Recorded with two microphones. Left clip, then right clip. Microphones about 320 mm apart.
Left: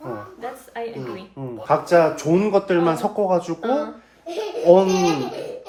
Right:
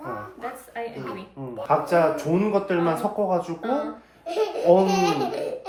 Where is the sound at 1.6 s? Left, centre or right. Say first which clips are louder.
Left 4 dB; left.